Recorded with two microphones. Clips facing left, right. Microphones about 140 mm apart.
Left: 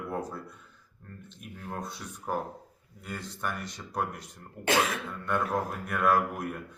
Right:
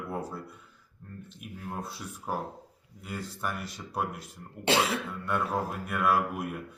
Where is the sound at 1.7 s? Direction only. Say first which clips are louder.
Even; 5° right (ahead or behind).